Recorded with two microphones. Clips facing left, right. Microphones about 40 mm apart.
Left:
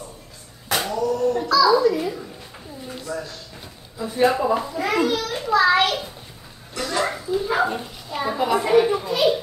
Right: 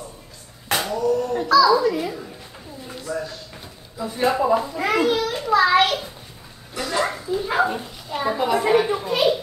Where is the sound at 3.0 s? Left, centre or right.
Centre.